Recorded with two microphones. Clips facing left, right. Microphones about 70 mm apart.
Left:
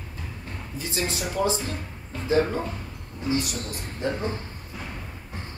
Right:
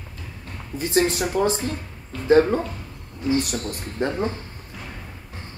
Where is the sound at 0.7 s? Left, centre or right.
Right.